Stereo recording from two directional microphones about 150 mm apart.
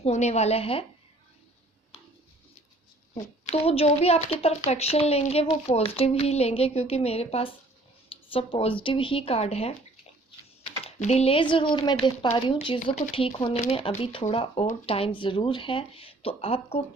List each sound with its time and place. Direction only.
0.0 s speech: 45° left (ahead or behind)
3.5 s speech: 45° left (ahead or behind)